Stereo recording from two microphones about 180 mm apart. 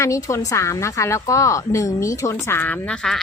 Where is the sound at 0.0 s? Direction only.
15° left (ahead or behind).